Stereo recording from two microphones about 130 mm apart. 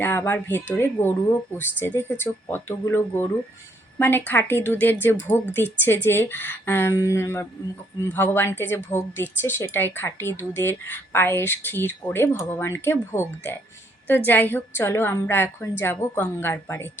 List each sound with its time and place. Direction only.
0.0 s a woman's voice: 15° left (ahead or behind)